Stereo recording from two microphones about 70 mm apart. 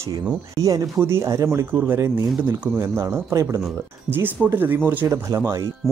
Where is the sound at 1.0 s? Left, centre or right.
Right.